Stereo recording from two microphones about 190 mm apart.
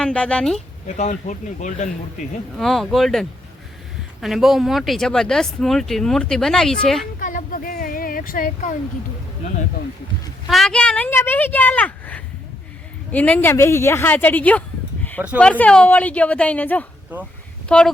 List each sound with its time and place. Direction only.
0.0 s speech: 5° left (ahead or behind)
0.9 s speech: 40° left (ahead or behind)
2.6 s speech: centre (ahead or behind)
7.2 s a sound: 45° left (ahead or behind)
10.5 s speech: 5° left (ahead or behind)
17.1 s speech: 10° right (ahead or behind)
17.7 s speech: 5° left (ahead or behind)